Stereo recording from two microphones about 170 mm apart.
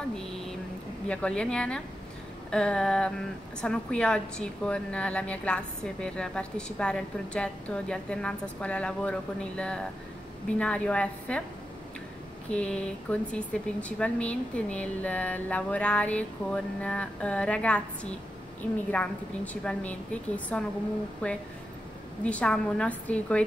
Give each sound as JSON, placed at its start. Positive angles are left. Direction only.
{"t": 1.0, "sound": "a woman's voice", "side_deg": 5}
{"t": 12.4, "sound": "speech", "side_deg": 5}
{"t": 18.9, "sound": "speech", "side_deg": 10}